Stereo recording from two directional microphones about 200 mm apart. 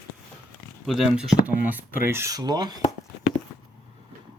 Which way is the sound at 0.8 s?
Centre (ahead or behind).